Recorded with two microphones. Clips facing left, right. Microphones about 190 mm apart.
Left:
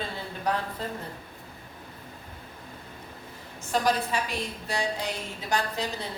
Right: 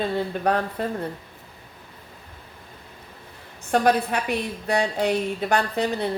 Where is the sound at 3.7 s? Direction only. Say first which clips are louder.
Right 6 dB; 60° right (ahead or behind).